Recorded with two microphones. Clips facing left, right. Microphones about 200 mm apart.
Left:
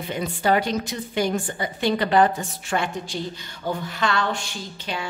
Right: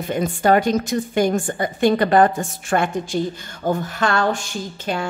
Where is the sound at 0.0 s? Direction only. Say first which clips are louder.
Right 5 dB; 50° right (ahead or behind).